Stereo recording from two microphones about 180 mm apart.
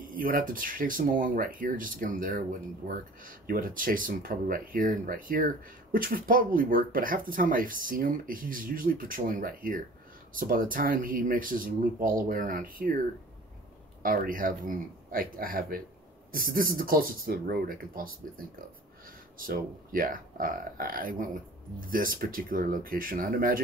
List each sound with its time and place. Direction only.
0.0 s speech: 50° right (ahead or behind)
14.0 s speech: 50° right (ahead or behind)
19.4 s speech: 50° right (ahead or behind)